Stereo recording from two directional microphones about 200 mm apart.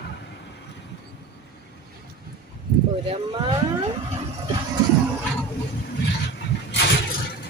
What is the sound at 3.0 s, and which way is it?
Cattle, 25° right (ahead or behind).